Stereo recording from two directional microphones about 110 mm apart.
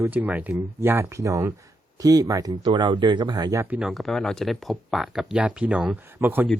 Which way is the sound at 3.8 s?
Centre (ahead or behind).